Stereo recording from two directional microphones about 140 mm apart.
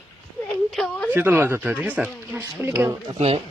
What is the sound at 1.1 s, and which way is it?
Speech, 15° right (ahead or behind).